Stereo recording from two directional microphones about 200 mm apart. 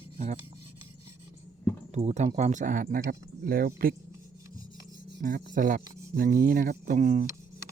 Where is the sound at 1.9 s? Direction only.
35° right (ahead or behind).